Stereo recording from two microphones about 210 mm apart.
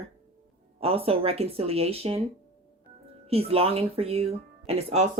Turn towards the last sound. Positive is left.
turn(degrees=-30)  # may be behind; listen again after turning